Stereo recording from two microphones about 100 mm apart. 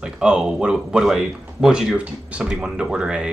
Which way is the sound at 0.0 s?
10° right (ahead or behind).